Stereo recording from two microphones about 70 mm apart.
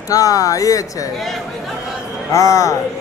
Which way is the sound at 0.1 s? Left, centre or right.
Left.